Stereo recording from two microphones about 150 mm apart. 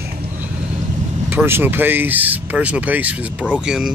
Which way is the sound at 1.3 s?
15° right (ahead or behind).